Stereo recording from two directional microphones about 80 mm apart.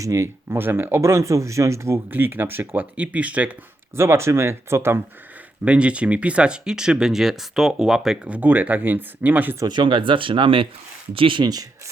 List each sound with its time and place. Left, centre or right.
0.0 s speech: right
2.0 s speech: right
3.9 s speech: right
5.6 s speech: centre
9.6 s speech: right